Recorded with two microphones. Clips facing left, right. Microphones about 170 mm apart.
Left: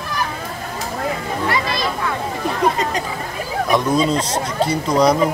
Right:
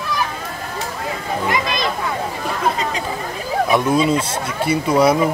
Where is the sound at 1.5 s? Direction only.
20° right (ahead or behind).